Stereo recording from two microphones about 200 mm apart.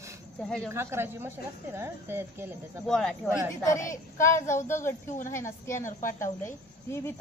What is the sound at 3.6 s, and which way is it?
Speech, 15° left (ahead or behind).